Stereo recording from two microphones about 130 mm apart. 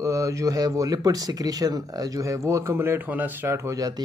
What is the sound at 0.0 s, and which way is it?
Speech, 25° right (ahead or behind).